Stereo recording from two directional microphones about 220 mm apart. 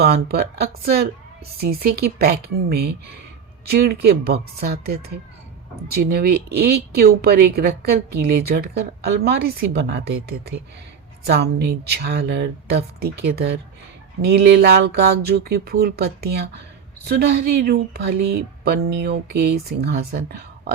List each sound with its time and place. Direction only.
0.0 s speech: 45° right (ahead or behind)